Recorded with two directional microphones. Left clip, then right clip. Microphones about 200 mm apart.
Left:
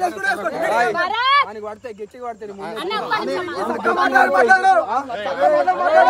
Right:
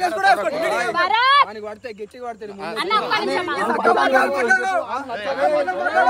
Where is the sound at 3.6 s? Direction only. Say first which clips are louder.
Right 3 dB; 40° right (ahead or behind).